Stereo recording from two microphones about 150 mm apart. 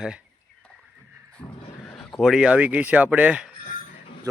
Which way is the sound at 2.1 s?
Centre (ahead or behind).